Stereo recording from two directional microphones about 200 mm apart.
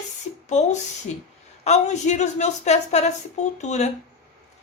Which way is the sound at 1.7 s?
35° left (ahead or behind).